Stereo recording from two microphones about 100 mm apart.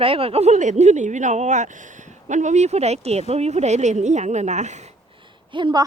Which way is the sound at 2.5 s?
90° right.